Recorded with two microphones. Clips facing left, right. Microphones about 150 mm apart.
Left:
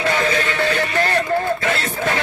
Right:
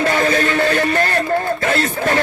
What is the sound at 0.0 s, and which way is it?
Music, 45° right (ahead or behind).